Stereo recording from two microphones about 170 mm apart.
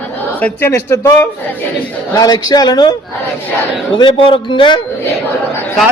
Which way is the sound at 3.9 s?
30° left (ahead or behind).